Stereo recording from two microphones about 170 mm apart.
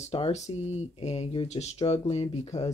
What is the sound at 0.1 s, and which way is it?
Speech, 30° left (ahead or behind).